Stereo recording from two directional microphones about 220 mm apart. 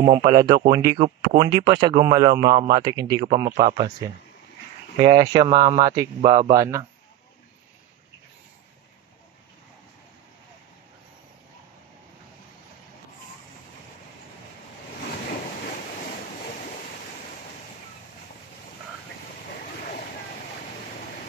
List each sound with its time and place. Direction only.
0.0 s speech: 30° right (ahead or behind)
0.3 s speech: 15° right (ahead or behind)
3.4 s speech: 35° right (ahead or behind)
5.0 s speech: 20° right (ahead or behind)